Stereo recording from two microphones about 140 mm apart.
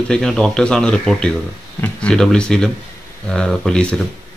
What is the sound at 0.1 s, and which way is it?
Speech, 5° left (ahead or behind).